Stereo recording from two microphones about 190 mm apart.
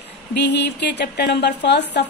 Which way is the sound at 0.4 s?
65° left (ahead or behind).